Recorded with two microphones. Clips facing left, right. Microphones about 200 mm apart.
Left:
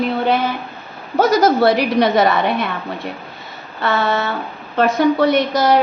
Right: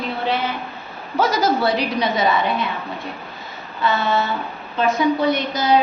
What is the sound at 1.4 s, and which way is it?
A woman's voice, 60° left (ahead or behind).